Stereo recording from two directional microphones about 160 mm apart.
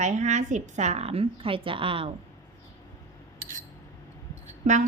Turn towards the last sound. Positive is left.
turn(degrees=-55)  # may be behind; listen again after turning